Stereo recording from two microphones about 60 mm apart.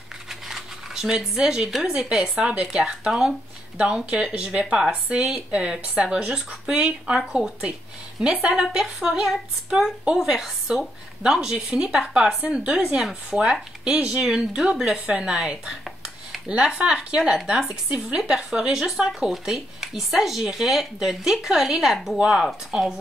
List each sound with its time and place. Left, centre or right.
0.3 s a sound: centre
1.8 s a woman's voice: centre
17.2 s a woman's voice: centre